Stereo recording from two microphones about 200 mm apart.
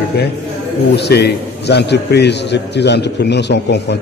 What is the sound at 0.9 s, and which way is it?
A man's voice, 55° left (ahead or behind).